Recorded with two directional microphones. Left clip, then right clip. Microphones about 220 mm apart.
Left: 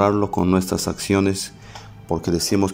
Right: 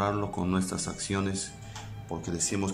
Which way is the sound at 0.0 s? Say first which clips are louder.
Left 11 dB; 25° left (ahead or behind).